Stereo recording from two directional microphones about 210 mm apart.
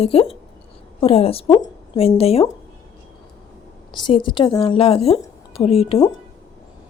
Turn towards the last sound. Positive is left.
turn(degrees=30)  # may be behind; listen again after turning